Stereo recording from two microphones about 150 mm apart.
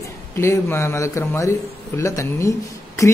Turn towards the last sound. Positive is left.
turn(degrees=20)  # may be behind; listen again after turning